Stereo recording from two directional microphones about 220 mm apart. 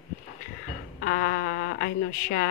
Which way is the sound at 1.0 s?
45° left (ahead or behind).